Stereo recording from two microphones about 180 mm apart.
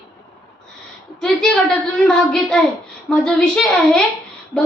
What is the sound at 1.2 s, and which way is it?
A woman's voice, 5° left (ahead or behind).